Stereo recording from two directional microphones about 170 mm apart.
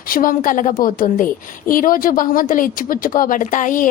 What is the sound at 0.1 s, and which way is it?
A woman's voice, 55° left (ahead or behind).